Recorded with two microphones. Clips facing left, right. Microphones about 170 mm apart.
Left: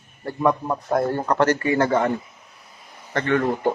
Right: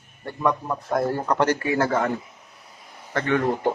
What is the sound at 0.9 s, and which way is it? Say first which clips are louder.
Speech: left 1 dB; centre (ahead or behind).